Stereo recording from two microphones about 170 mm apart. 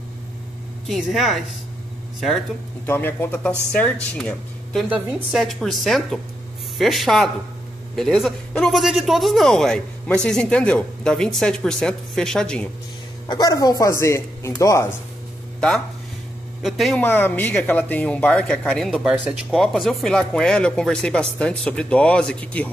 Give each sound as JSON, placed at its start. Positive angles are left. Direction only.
{"t": 0.8, "sound": "speech", "side_deg": 0}
{"t": 2.9, "sound": "speech", "side_deg": 10}
{"t": 4.8, "sound": "speech", "side_deg": -5}
{"t": 13.3, "sound": "speech", "side_deg": 20}
{"t": 16.6, "sound": "speech", "side_deg": 0}
{"t": 17.0, "sound": "speech", "side_deg": 10}